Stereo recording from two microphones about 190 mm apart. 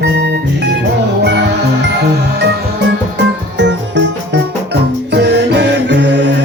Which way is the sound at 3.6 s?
70° right (ahead or behind).